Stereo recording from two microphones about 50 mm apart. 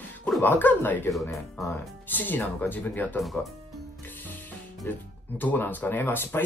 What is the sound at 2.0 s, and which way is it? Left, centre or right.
Speech, left.